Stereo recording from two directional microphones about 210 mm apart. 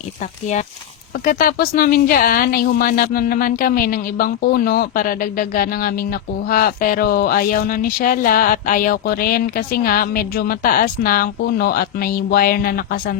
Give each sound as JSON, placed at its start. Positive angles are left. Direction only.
{"t": 1.2, "sound": "speech", "side_deg": 40}